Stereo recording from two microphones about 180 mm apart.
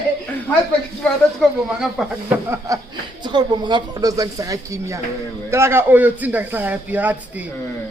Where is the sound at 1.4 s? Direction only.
5° right (ahead or behind).